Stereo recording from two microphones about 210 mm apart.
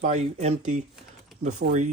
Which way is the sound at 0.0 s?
35° right (ahead or behind).